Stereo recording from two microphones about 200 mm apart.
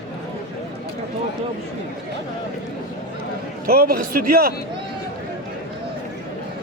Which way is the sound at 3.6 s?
50° right (ahead or behind).